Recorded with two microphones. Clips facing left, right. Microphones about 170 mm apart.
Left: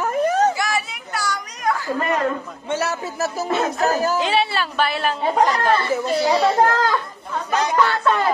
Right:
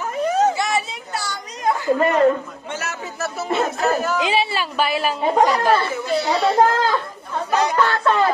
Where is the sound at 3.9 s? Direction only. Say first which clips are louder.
Even; 35° left (ahead or behind).